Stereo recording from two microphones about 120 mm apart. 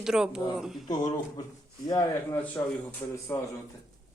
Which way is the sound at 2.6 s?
20° left (ahead or behind).